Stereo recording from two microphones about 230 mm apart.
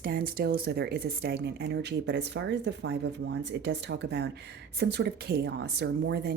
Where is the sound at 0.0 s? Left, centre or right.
Right.